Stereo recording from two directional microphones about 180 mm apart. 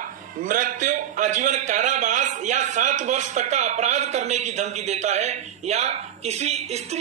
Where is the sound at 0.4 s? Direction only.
45° right (ahead or behind).